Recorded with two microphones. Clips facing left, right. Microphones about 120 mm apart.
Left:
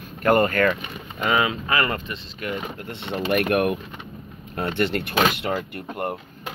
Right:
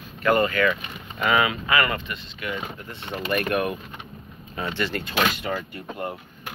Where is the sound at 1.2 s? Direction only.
25° left (ahead or behind).